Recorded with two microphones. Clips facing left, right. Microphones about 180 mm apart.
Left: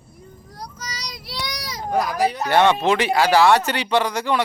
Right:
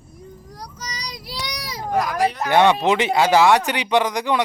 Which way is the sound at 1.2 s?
15° right (ahead or behind).